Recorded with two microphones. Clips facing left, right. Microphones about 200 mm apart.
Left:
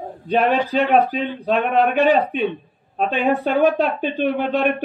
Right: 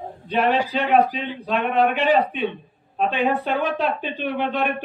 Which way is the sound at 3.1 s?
45° left (ahead or behind).